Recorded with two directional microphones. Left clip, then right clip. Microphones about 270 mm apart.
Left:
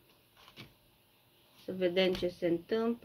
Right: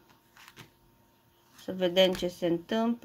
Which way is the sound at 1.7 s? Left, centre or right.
Right.